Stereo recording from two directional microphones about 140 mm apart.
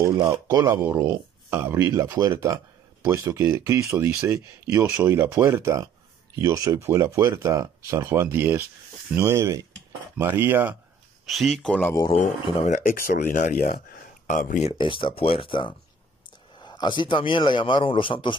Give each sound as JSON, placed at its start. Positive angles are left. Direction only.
{"t": 0.0, "sound": "speech", "side_deg": -20}
{"t": 11.2, "sound": "speech", "side_deg": 0}
{"t": 12.6, "sound": "speech", "side_deg": 75}
{"t": 14.7, "sound": "a man's voice", "side_deg": 35}